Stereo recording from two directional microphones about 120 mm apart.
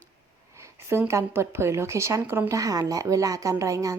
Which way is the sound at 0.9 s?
20° right (ahead or behind).